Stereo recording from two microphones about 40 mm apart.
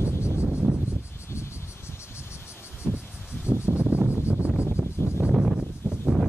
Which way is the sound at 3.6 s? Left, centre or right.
Right.